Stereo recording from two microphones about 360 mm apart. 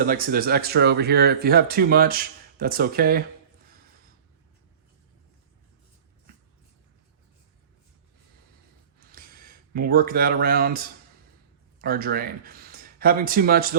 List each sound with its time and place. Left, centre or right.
0.0 s speech: right
9.1 s speech: right